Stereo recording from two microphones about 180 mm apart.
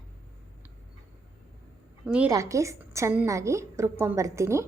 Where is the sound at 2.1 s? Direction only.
5° right (ahead or behind).